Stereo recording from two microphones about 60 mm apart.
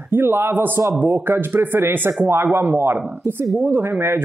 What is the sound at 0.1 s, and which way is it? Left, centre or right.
Speech, right.